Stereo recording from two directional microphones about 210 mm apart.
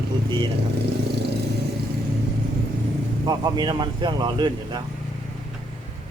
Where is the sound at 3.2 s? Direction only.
20° right (ahead or behind).